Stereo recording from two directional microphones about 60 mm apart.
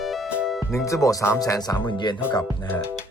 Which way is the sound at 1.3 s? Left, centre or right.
Left.